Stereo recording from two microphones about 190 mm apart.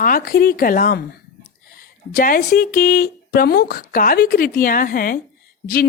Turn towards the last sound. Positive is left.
turn(degrees=55)  # may be behind; listen again after turning